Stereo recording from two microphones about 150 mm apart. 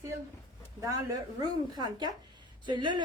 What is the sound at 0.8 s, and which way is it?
A woman's voice, 20° right (ahead or behind).